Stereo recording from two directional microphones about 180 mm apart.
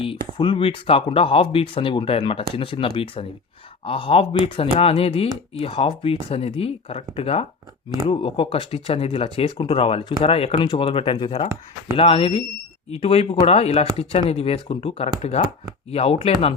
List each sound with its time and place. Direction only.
0.0 s speech: 30° left (ahead or behind)